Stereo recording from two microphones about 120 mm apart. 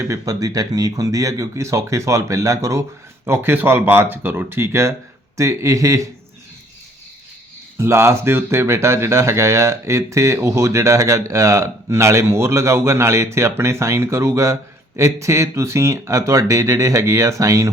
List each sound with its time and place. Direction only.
0.0 s speech: 25° right (ahead or behind)
7.8 s speech: 25° right (ahead or behind)